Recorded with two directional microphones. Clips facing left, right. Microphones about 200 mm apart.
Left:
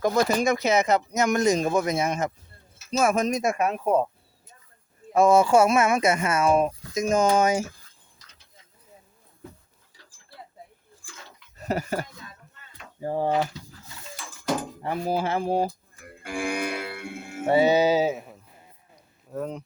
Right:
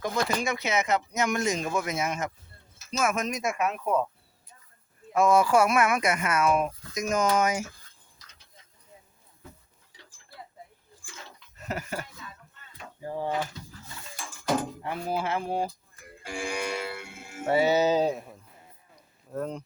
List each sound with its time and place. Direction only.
0.0 s speech: 40° left (ahead or behind)
5.1 s speech: 30° left (ahead or behind)
11.5 s speech: 35° left (ahead or behind)
13.1 s speech: 45° left (ahead or behind)
14.8 s speech: 35° left (ahead or behind)
16.2 s music: 55° left (ahead or behind)
17.5 s speech: 20° left (ahead or behind); by 19.6 s centre (ahead or behind)